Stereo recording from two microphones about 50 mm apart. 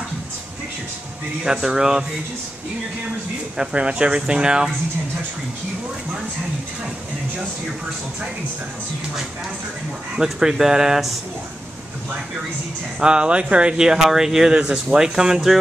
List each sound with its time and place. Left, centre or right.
1.4 s speech: centre
3.5 s speech: right
10.1 s speech: centre
13.0 s speech: centre